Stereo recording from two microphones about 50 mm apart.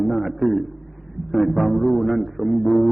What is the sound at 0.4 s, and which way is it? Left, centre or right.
Speech, left.